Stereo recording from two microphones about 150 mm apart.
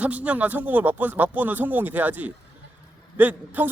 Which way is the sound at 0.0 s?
10° right (ahead or behind).